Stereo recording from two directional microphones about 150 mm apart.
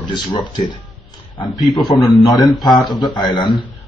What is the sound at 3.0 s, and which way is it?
Speech, 30° left (ahead or behind).